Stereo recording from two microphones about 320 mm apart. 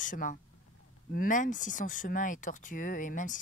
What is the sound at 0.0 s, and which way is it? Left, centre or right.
Speech, left.